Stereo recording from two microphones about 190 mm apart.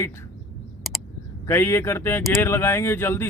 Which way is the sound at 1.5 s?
15° left (ahead or behind).